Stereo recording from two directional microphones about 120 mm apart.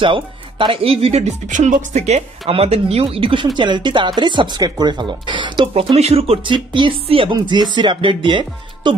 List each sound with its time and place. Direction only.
0.0 s speech: 45° right (ahead or behind); by 2.2 s 80° right
2.4 s speech: 55° right (ahead or behind)